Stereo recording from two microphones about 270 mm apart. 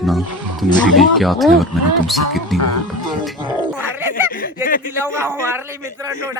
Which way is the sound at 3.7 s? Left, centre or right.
Centre.